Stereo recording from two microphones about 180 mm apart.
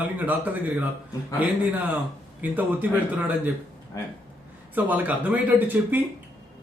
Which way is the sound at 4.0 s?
15° left (ahead or behind).